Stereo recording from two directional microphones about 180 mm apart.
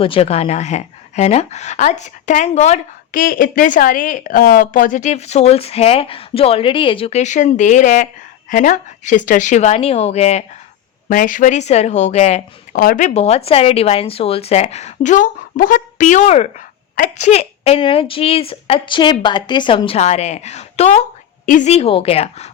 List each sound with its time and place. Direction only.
0.0 s speech: 30° left (ahead or behind)
11.1 s speech: 50° left (ahead or behind)
12.7 s speech: 55° left (ahead or behind); by 22.4 s 35° left (ahead or behind)